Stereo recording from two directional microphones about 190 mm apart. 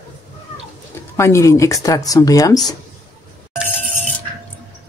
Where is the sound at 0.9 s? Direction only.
15° left (ahead or behind).